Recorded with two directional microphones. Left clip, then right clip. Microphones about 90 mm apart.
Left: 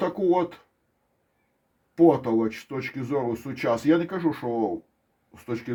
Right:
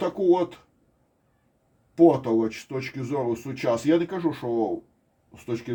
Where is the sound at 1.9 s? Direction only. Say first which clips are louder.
Right 1 dB; 40° left (ahead or behind).